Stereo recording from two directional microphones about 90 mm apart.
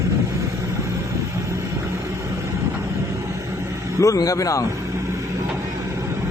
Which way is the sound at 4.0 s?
40° left (ahead or behind).